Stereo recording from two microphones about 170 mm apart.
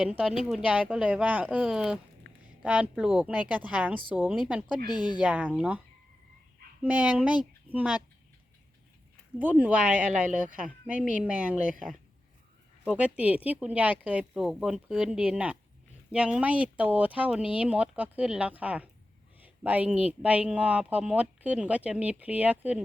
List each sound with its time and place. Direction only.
0.0 s speech: 5° right (ahead or behind)
4.9 s speech: 25° left (ahead or behind)
5.2 s speech: 5° right (ahead or behind)
6.8 s speech: 5° right (ahead or behind)
9.4 s speech: 10° right (ahead or behind)
11.2 s speech: 5° right (ahead or behind)